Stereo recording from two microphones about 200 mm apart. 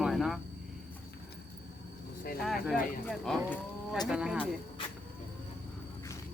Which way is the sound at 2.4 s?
Centre (ahead or behind).